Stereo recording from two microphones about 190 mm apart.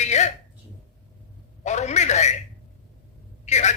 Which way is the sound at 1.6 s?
35° left (ahead or behind).